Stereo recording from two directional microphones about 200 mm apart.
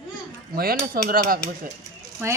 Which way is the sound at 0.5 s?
50° right (ahead or behind).